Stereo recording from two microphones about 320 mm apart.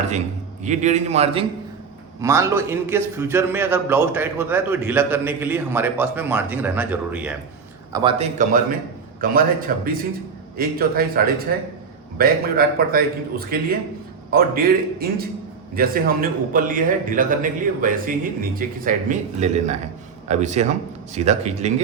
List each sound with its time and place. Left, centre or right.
0.6 s a man's voice: right; by 7.3 s centre
7.9 s a man's voice: centre